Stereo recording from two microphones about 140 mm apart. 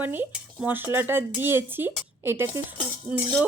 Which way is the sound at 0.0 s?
15° right (ahead or behind).